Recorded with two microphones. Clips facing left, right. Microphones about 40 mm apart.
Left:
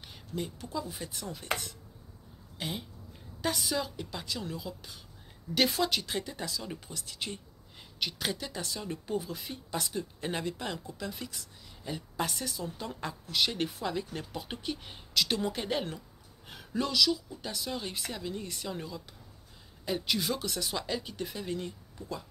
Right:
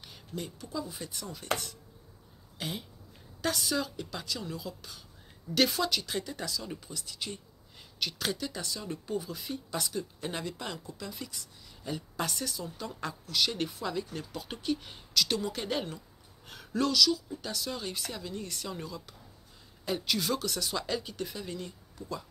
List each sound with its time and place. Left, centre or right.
0.0 s a sound: centre
0.7 s speech: left
2.6 s speech: centre
5.7 s speech: left
6.9 s speech: left
8.0 s speech: centre
8.4 s speech: left
11.8 s speech: left
16.4 s speech: centre
21.3 s speech: left